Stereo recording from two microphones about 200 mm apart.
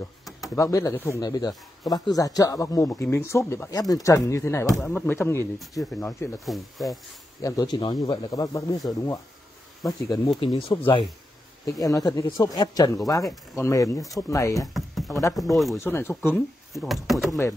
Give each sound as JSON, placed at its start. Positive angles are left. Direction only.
{"t": 0.6, "sound": "speech", "side_deg": 15}
{"t": 7.4, "sound": "speech", "side_deg": 20}
{"t": 14.7, "sound": "a sound", "side_deg": 0}
{"t": 15.5, "sound": "speech", "side_deg": 0}
{"t": 15.8, "sound": "speech", "side_deg": 10}
{"t": 16.7, "sound": "speech", "side_deg": 0}